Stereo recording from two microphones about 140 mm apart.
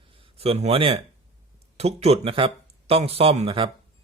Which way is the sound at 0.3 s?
45° right (ahead or behind).